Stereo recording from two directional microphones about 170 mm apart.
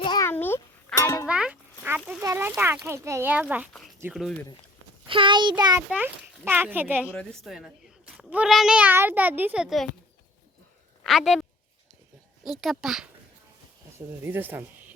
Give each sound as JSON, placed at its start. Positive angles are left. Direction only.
{"t": 0.0, "sound": "a sound", "side_deg": 25}
{"t": 0.3, "sound": "a sound", "side_deg": 10}
{"t": 1.3, "sound": "music", "side_deg": -5}
{"t": 2.2, "sound": "a child's voice", "side_deg": -15}
{"t": 3.7, "sound": "a child's voice", "side_deg": 5}
{"t": 5.0, "sound": "a child's voice", "side_deg": -30}
{"t": 5.9, "sound": "a child's voice", "side_deg": -10}
{"t": 7.1, "sound": "a child's voice", "side_deg": 5}
{"t": 11.0, "sound": "a woman's voice", "side_deg": 0}
{"t": 12.5, "sound": "a child's voice", "side_deg": 0}
{"t": 14.1, "sound": "a child's voice", "side_deg": -10}